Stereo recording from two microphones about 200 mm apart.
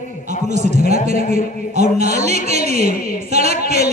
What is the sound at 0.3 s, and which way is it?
A man's voice, 35° right (ahead or behind).